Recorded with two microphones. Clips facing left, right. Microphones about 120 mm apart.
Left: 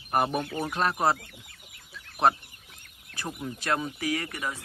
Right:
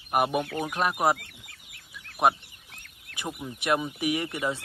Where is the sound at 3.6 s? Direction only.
20° right (ahead or behind).